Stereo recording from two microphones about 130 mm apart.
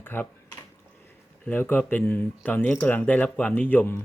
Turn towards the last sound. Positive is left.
turn(degrees=15)  # may be behind; listen again after turning